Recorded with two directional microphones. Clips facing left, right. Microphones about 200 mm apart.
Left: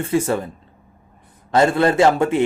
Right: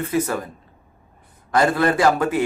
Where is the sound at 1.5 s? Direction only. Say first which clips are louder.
Left 3 dB; 25° left (ahead or behind).